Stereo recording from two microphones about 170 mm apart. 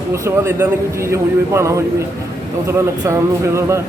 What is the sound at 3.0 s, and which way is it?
Speech, 15° right (ahead or behind).